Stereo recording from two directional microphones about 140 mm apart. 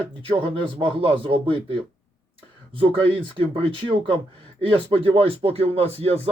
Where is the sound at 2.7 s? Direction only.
40° right (ahead or behind).